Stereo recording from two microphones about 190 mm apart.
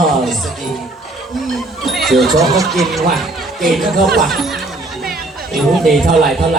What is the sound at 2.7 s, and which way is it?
Speech, centre (ahead or behind).